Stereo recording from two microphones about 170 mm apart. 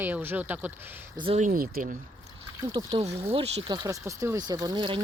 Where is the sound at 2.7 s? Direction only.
35° right (ahead or behind).